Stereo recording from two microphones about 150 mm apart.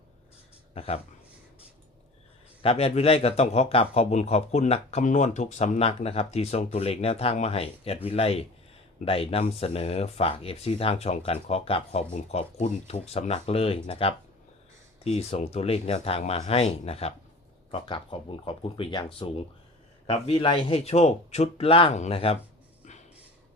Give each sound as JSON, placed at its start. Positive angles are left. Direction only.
{"t": 0.7, "sound": "speech", "side_deg": 45}
{"t": 2.6, "sound": "a man's voice", "side_deg": 40}
{"t": 20.1, "sound": "speech", "side_deg": 40}